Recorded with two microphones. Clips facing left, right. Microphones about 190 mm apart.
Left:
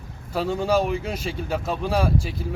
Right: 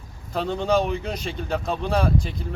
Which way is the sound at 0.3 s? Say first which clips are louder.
Even; 5° left (ahead or behind).